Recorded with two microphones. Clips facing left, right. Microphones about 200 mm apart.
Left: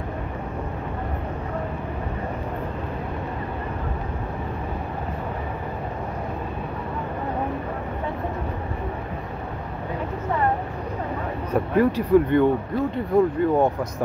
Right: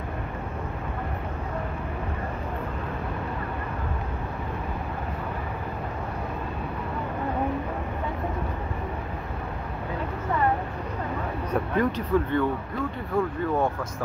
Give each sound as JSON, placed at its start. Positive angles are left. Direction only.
{"t": 11.5, "sound": "speech", "side_deg": 10}